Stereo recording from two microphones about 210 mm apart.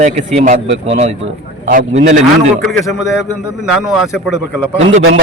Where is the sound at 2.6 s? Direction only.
Centre (ahead or behind).